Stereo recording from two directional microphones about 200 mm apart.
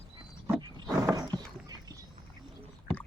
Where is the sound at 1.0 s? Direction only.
20° right (ahead or behind).